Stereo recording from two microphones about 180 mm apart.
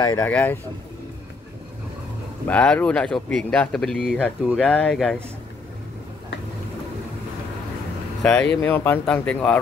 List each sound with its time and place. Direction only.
0.0 s speech: 20° left (ahead or behind)
2.4 s speech: 5° left (ahead or behind)
8.2 s speech: 5° left (ahead or behind)